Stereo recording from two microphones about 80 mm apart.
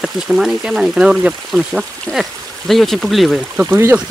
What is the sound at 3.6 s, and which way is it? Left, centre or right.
Speech, right.